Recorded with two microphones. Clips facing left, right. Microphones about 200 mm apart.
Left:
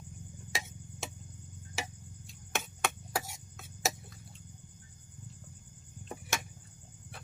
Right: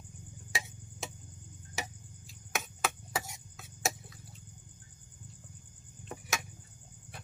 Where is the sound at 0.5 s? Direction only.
Centre (ahead or behind).